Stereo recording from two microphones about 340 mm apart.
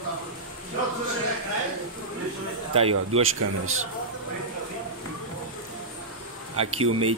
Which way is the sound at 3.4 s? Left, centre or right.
Right.